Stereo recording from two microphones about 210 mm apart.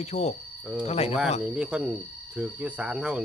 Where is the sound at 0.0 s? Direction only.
30° left (ahead or behind).